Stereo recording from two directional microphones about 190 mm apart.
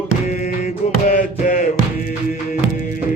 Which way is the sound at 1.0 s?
40° left (ahead or behind).